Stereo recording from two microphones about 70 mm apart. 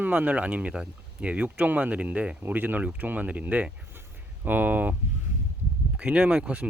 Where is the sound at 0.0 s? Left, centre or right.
Centre.